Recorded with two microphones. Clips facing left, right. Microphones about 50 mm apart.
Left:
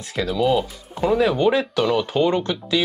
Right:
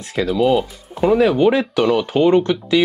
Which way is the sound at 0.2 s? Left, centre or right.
Right.